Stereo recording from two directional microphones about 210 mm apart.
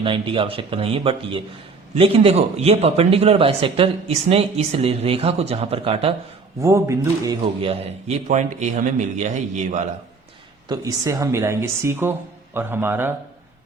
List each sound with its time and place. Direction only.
0.0 s speech: 25° right (ahead or behind)
6.6 s speech: 15° right (ahead or behind)
7.6 s a man's voice: 30° right (ahead or behind)
10.7 s speech: 15° right (ahead or behind)